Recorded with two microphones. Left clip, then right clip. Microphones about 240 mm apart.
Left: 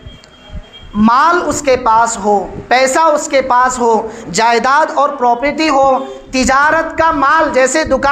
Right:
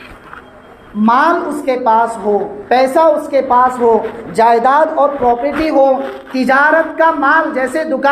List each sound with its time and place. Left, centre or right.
1.0 s speech: left